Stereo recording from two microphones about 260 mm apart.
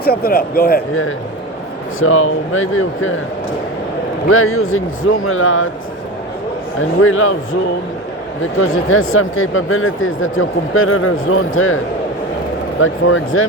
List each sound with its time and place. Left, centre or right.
0.0 s speech: left
2.0 s speech: left
4.3 s speech: left
7.0 s speech: left
8.5 s speech: left
12.8 s speech: left